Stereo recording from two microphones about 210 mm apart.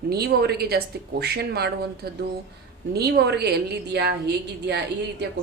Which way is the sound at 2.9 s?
50° right (ahead or behind).